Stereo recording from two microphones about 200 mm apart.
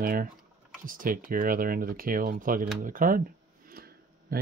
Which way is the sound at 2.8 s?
45° right (ahead or behind).